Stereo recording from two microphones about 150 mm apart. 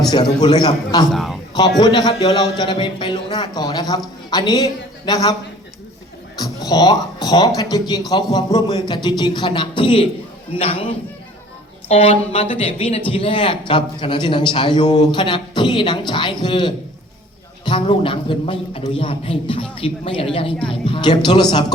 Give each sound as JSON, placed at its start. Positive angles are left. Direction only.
{"t": 0.1, "sound": "speech", "side_deg": 30}
{"t": 1.1, "sound": "a man's voice", "side_deg": 0}
{"t": 1.8, "sound": "a woman's voice", "side_deg": 25}
{"t": 6.4, "sound": "a man's voice", "side_deg": 25}